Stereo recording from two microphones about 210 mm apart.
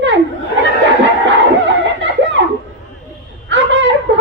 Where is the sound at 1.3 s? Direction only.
60° right (ahead or behind).